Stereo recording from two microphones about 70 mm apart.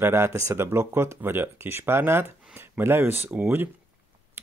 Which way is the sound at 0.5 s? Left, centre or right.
Right.